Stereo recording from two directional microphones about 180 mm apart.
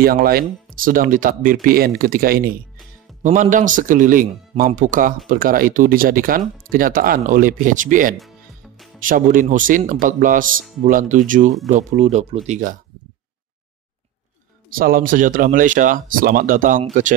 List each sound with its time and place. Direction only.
0.0 s a man's voice: 55° right (ahead or behind)
14.7 s a man's voice: 50° right (ahead or behind)